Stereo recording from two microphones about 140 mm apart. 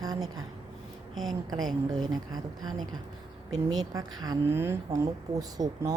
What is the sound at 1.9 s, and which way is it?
Speech, 30° right (ahead or behind).